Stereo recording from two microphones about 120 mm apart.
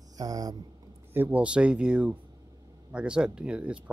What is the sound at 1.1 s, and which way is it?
Speech, 15° right (ahead or behind).